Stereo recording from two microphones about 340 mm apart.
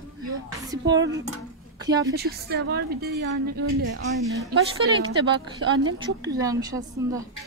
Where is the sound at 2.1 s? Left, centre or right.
Right.